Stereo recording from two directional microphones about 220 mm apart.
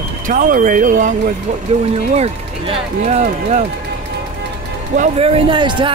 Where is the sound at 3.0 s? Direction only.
30° right (ahead or behind).